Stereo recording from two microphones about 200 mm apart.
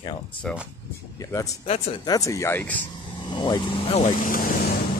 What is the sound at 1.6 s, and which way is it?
Speech, 30° left (ahead or behind).